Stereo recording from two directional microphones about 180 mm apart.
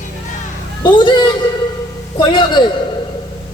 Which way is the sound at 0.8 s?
25° left (ahead or behind).